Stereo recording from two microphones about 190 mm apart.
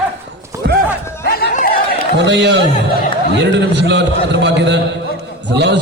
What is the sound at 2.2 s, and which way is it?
A man's voice, 65° right (ahead or behind).